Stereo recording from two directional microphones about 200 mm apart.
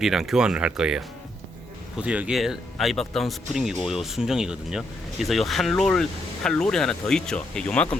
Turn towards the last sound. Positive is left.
turn(degrees=5)  # may be behind; listen again after turning